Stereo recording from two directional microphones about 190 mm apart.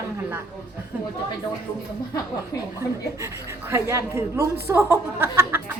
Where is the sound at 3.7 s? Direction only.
15° right (ahead or behind).